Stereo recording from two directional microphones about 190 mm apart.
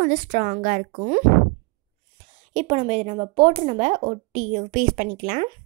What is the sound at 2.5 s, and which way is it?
Speech, 35° right (ahead or behind).